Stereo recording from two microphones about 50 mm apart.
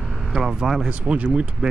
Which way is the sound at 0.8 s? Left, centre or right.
Right.